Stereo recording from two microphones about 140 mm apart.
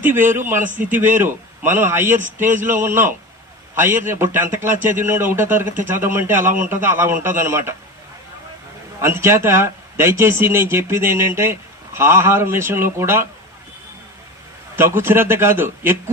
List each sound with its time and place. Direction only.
0.0 s a man's voice: 15° right (ahead or behind)
9.0 s a man's voice: 20° right (ahead or behind)
14.8 s a man's voice: 15° right (ahead or behind)